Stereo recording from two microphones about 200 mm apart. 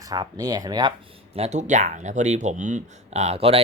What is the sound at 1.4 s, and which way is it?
Speech, 35° right (ahead or behind).